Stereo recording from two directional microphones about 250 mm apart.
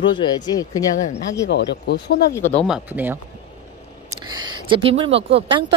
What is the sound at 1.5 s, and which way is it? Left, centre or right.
Speech, left.